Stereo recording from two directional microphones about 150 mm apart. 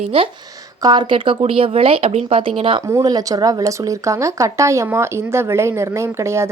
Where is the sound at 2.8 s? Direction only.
20° right (ahead or behind).